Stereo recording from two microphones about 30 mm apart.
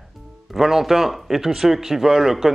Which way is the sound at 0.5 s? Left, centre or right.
Centre.